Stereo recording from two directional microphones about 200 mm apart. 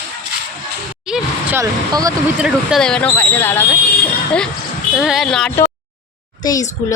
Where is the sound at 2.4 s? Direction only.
5° right (ahead or behind).